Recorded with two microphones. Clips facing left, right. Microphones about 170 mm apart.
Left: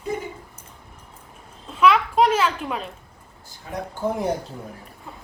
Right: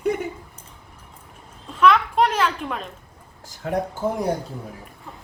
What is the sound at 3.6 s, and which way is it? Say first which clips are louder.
Speech: right 8 dB; 70° right (ahead or behind).